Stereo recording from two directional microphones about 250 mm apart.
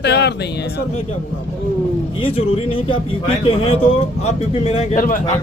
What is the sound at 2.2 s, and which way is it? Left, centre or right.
Speech, left.